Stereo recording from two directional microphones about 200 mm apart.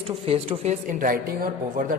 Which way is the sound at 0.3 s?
30° right (ahead or behind).